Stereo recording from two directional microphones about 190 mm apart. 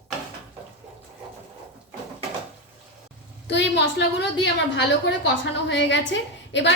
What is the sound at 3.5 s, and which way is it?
A woman's voice, 65° left (ahead or behind).